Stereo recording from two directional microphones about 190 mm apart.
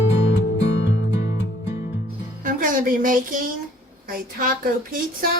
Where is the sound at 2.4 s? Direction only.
45° right (ahead or behind).